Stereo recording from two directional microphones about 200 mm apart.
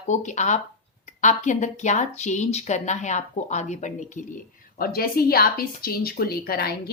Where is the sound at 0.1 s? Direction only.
35° left (ahead or behind).